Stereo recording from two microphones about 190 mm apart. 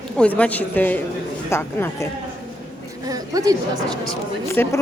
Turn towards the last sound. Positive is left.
turn(degrees=10)  # may be behind; listen again after turning